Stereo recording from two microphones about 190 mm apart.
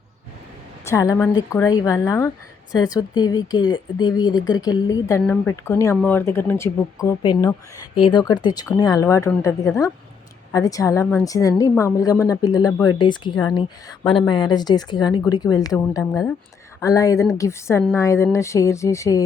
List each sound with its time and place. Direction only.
0.9 s a woman's voice: 15° left (ahead or behind)